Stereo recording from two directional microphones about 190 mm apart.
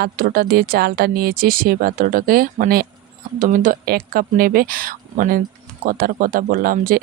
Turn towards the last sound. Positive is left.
turn(degrees=-45)  # may be behind; listen again after turning